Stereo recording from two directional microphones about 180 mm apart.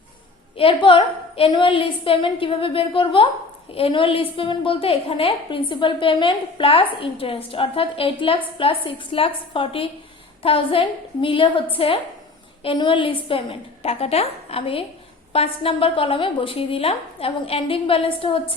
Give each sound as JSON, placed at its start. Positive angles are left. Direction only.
{"t": 0.5, "sound": "a woman's voice", "side_deg": 30}